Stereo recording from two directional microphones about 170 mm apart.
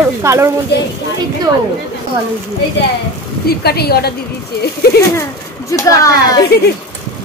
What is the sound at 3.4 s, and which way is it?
Speech, 70° left (ahead or behind).